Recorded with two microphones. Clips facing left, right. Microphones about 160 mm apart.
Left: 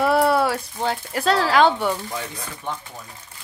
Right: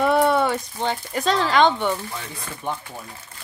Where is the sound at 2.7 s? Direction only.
15° right (ahead or behind).